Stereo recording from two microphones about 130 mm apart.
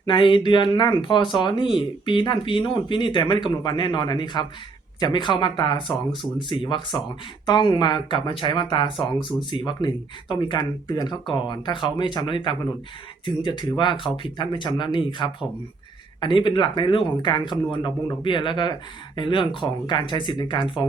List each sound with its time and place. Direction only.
0.0 s speech: 40° left (ahead or behind)